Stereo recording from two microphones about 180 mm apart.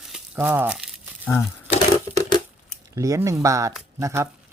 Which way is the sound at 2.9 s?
15° right (ahead or behind).